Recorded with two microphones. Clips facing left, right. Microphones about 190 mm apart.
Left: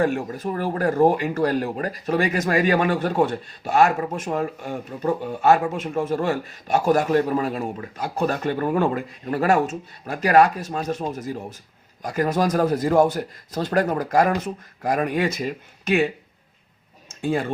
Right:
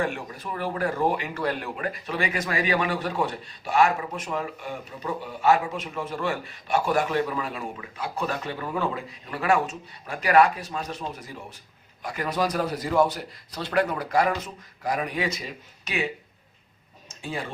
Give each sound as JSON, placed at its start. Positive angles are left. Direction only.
{"t": 0.0, "sound": "speech", "side_deg": 40}
{"t": 17.2, "sound": "speech", "side_deg": 50}